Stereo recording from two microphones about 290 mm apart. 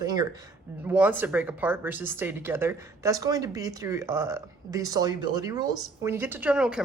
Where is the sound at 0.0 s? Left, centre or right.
Centre.